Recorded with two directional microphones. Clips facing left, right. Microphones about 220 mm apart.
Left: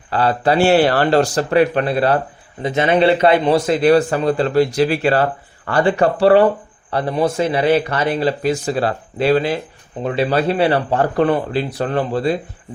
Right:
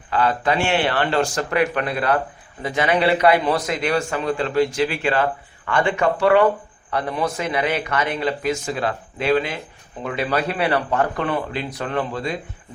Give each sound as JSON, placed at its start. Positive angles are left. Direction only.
{"t": 0.1, "sound": "speech", "side_deg": 35}